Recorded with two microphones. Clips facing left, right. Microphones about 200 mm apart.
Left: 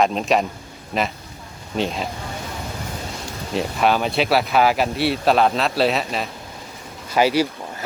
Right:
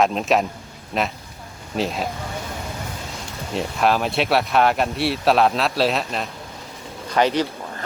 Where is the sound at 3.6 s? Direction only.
Centre (ahead or behind).